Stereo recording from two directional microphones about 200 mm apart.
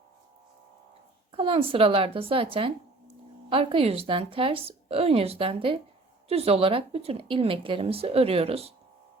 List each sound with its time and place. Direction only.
1.3 s speech: 25° right (ahead or behind)